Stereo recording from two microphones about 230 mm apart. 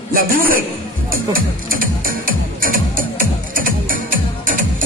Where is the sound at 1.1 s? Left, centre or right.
Right.